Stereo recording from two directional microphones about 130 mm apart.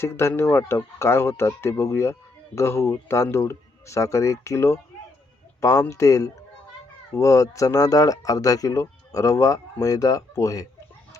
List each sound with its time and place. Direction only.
0.0 s speech: 20° left (ahead or behind)